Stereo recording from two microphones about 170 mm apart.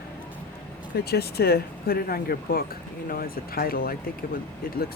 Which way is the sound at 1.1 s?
70° left (ahead or behind).